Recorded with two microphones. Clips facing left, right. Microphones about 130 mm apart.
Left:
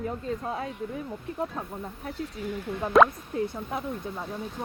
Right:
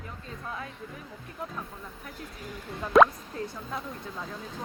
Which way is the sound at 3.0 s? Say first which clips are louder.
Even; 5° left (ahead or behind).